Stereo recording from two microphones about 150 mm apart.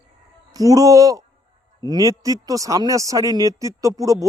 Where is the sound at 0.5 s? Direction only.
25° right (ahead or behind).